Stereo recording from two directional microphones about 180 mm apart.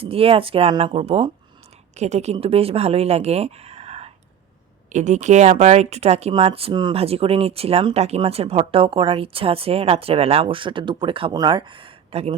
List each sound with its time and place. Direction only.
0.0 s speech: 30° right (ahead or behind)